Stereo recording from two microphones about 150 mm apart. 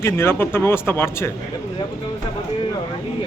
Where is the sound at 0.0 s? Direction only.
15° left (ahead or behind).